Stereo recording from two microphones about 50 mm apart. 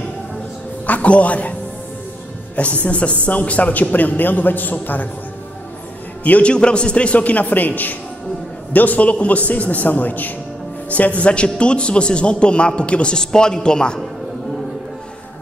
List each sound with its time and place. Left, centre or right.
0.8 s a man's voice: left
2.5 s a man's voice: left
6.2 s a man's voice: left
6.5 s a man's voice: centre